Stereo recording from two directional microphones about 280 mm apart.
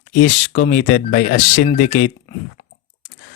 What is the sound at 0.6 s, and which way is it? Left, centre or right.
Speech, left.